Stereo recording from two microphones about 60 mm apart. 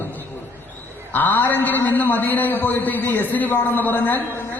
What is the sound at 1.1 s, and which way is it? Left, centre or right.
A man's voice, left.